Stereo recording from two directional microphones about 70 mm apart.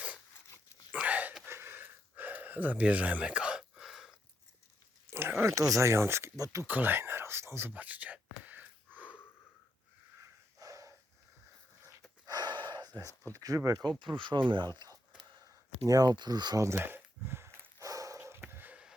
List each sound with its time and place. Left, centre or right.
0.9 s a sound: right
1.5 s gasp: right; by 4.1 s centre
5.4 s speech: right
6.3 s speech: right
6.7 s speech: right
7.7 s whispering: right
10.2 s snort: right
12.2 s gasp: right
13.3 s speech: right
14.1 s speech: right
15.8 s speech: right
16.6 s a sound: right
17.7 s bow-wow: right
18.3 s a sound: right